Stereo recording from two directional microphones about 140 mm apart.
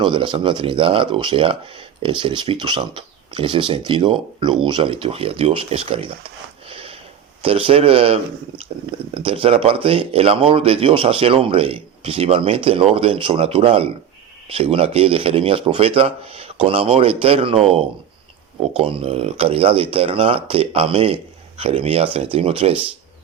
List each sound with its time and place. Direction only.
0.0 s speech: 35° right (ahead or behind)